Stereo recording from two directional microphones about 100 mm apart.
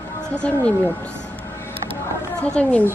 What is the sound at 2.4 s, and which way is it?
Speech, 10° left (ahead or behind).